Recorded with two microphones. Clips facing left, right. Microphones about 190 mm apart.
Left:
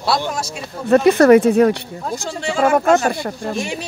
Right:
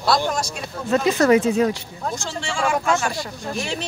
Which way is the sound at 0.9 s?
55° left (ahead or behind).